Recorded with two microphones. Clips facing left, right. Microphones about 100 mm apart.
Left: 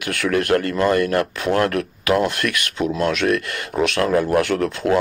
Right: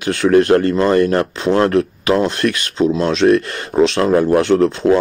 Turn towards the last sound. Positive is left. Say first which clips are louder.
# right 7 dB
turn(degrees=-30)  # may be behind; listen again after turning